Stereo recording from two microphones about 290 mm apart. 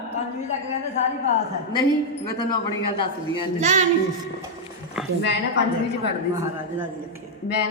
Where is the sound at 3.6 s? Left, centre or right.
Right.